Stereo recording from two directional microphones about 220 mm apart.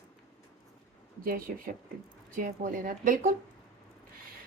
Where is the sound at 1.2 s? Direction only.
40° right (ahead or behind).